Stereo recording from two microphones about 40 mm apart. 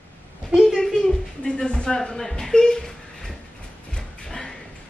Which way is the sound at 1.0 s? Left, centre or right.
Left.